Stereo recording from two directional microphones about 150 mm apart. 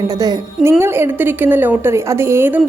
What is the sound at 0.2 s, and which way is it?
A woman's voice, 20° right (ahead or behind).